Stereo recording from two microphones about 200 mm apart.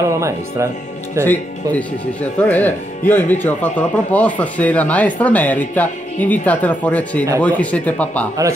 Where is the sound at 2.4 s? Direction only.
10° left (ahead or behind).